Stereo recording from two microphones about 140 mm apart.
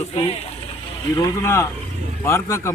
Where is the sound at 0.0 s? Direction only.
45° left (ahead or behind).